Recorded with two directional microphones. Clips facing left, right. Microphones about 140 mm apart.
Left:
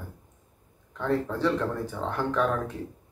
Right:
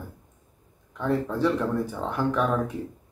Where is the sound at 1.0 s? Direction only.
10° right (ahead or behind).